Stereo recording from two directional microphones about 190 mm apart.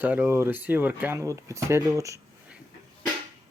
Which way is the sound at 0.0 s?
10° right (ahead or behind).